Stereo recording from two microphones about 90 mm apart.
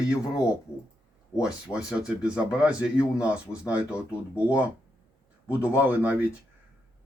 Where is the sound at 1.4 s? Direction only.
10° right (ahead or behind).